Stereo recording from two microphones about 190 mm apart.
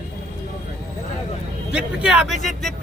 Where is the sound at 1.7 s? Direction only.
5° right (ahead or behind).